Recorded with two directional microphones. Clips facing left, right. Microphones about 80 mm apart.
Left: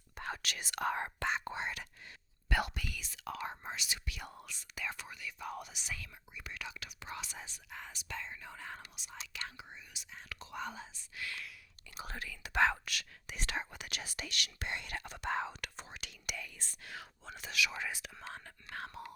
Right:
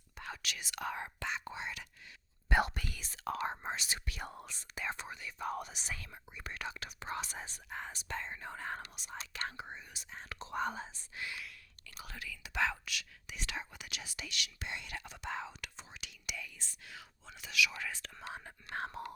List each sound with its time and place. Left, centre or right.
0.2 s speech: left
2.5 s speech: right
2.7 s speech: right
10.3 s speech: right
10.6 s speech: right
11.2 s speech: right
11.9 s speech: left
17.7 s speech: centre
18.2 s speech: centre
18.4 s speech: right